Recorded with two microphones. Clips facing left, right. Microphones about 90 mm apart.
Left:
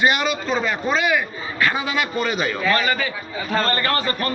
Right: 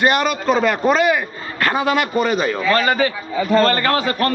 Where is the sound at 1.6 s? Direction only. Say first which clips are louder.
Right 4 dB; 50° right (ahead or behind).